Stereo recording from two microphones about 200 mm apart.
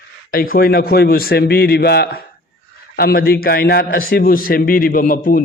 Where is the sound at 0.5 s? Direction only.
45° left (ahead or behind).